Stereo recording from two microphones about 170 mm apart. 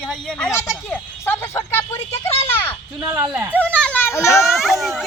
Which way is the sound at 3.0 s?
20° right (ahead or behind).